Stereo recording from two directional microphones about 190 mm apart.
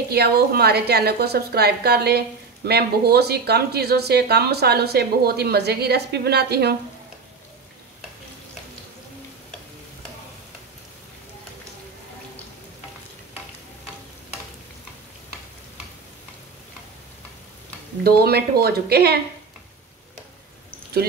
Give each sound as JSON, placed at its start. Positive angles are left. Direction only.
{"t": 0.1, "sound": "a woman's voice", "side_deg": -55}
{"t": 18.0, "sound": "a woman's voice", "side_deg": -55}